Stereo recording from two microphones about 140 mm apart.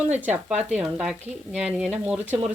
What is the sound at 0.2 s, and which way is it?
Speech, 10° right (ahead or behind).